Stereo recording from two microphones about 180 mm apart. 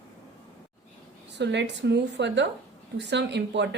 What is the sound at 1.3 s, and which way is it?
A woman's voice, 75° right (ahead or behind).